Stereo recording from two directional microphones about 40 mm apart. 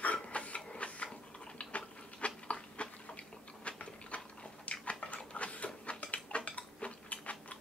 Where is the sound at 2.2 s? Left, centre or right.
Left.